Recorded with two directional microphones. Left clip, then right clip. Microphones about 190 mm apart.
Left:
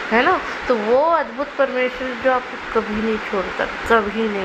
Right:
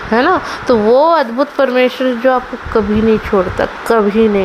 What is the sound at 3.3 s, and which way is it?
Speech, 50° right (ahead or behind).